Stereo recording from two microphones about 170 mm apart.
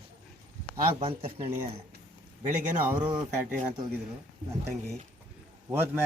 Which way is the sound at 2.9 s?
20° right (ahead or behind).